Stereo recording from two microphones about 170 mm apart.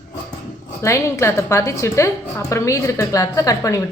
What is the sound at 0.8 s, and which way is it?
A woman's voice, 15° left (ahead or behind).